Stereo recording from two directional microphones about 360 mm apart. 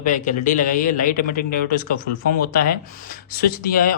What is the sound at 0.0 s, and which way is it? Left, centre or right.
Speech, left.